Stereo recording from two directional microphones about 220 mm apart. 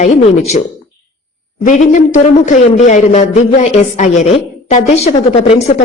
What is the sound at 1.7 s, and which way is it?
A man's voice, 35° left (ahead or behind).